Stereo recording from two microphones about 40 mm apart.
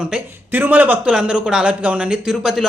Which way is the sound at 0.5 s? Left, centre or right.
Right.